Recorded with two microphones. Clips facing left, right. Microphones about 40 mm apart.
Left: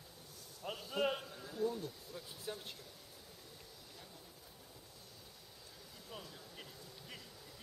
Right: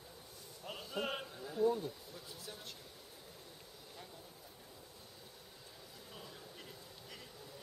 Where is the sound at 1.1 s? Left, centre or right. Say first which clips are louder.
Right 3 dB; centre.